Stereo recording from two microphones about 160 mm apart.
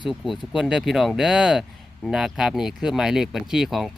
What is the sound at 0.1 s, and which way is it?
Speech, 5° right (ahead or behind).